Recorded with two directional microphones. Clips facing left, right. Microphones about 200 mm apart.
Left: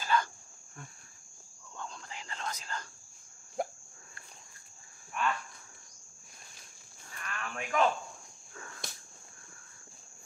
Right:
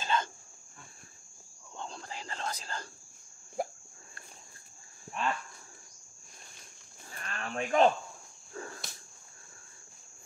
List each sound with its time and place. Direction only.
0.0 s cricket: 20° right (ahead or behind)
1.8 s whispering: 35° right (ahead or behind)
3.6 s cricket: 5° right (ahead or behind)
5.2 s cricket: 30° right (ahead or behind)
7.1 s a sound: 35° right (ahead or behind)
8.5 s cricket: 35° right (ahead or behind)